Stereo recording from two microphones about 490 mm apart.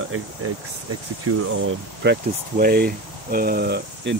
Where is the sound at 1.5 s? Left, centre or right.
Right.